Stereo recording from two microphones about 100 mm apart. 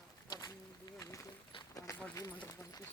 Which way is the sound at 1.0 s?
30° left (ahead or behind).